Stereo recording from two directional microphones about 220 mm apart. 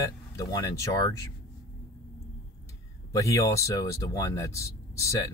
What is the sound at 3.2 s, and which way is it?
Speech, 15° left (ahead or behind).